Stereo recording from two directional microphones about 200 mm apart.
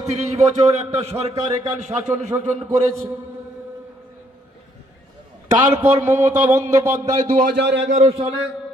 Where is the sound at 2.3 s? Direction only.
15° right (ahead or behind).